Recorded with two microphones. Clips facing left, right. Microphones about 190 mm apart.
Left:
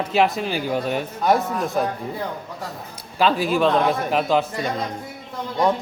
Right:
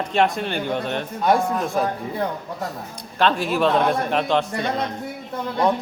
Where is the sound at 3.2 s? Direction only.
5° left (ahead or behind).